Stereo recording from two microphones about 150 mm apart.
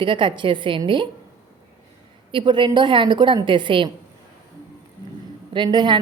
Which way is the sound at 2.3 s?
30° right (ahead or behind).